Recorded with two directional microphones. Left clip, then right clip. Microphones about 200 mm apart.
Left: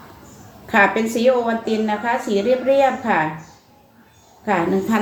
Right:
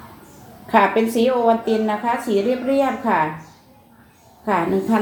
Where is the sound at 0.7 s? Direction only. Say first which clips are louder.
Even; 30° left (ahead or behind).